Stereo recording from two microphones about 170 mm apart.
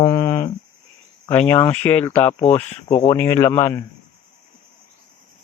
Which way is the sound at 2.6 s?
35° left (ahead or behind).